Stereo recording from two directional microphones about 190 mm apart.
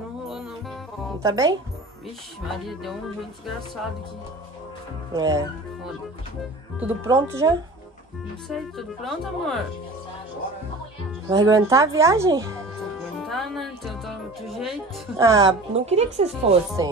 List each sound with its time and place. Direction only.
0.3 s music: 5° right (ahead or behind)
1.2 s speech: 20° right (ahead or behind)
2.4 s speech: centre (ahead or behind)
5.1 s speech: 20° right (ahead or behind)
6.8 s speech: 15° right (ahead or behind)
8.5 s speech: centre (ahead or behind)
11.2 s speech: 15° right (ahead or behind)
13.2 s speech: centre (ahead or behind)
15.1 s speech: 15° right (ahead or behind)
15.7 s speech: 35° right (ahead or behind)
16.8 s speech: 20° right (ahead or behind)